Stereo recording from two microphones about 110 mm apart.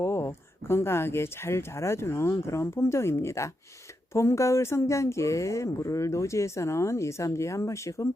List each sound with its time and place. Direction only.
0.0 s speech: 25° left (ahead or behind)